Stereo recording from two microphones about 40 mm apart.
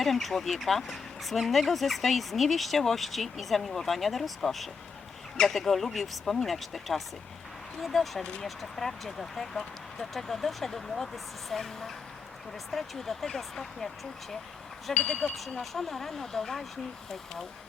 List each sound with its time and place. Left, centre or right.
0.0 s speech: centre